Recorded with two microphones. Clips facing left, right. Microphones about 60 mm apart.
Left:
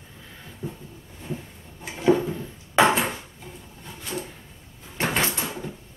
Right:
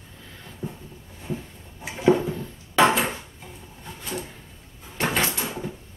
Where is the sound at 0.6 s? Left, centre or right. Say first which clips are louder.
Even; right.